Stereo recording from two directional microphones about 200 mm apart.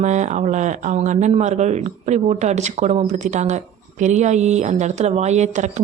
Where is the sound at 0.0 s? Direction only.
35° right (ahead or behind).